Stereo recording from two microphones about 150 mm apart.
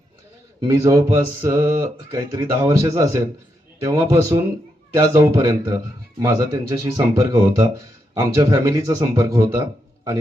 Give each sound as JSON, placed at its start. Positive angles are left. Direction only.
{"t": 0.6, "sound": "speech", "side_deg": -20}